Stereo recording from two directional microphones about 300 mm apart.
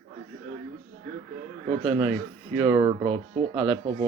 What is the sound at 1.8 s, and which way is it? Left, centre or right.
Speech, centre.